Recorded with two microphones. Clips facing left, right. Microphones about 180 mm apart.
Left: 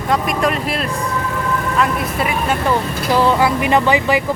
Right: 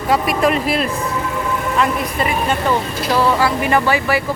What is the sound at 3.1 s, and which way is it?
Speech, 20° left (ahead or behind).